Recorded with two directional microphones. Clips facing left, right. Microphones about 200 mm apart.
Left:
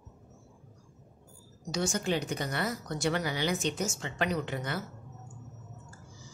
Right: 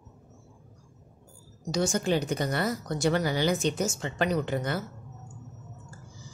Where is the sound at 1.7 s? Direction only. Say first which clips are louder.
Right 4 dB; 40° right (ahead or behind).